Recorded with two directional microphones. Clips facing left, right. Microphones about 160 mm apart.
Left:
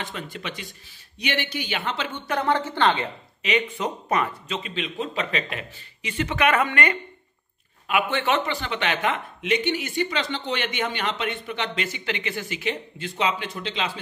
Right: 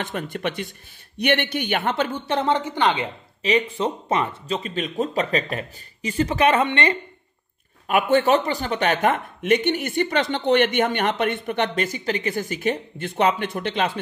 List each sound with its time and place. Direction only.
0.0 s speech: 50° right (ahead or behind)
2.2 s a woman's voice: 25° right (ahead or behind)
3.4 s speech: 30° right (ahead or behind)
4.6 s speech: 40° right (ahead or behind)
7.9 s speech: 40° right (ahead or behind)